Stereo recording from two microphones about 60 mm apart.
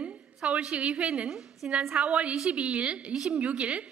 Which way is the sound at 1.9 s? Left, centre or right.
Centre.